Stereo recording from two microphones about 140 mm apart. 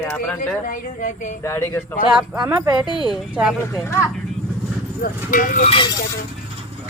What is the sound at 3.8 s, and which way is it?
Speech, 20° left (ahead or behind).